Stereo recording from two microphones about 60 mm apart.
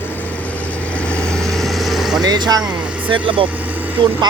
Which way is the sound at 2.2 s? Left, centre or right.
Right.